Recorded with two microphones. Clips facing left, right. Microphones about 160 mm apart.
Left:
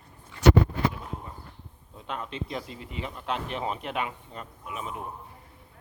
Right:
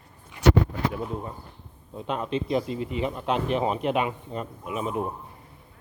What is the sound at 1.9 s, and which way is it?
Speech, 20° right (ahead or behind).